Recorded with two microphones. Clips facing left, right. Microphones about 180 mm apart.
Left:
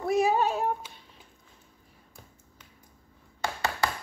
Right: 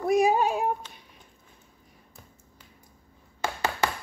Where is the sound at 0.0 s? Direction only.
15° right (ahead or behind).